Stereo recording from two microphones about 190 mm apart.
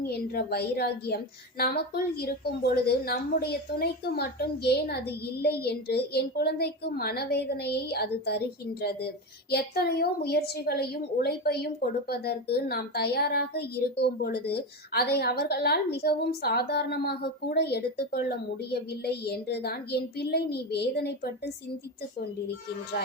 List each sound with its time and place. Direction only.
0.1 s speech: 55° left (ahead or behind)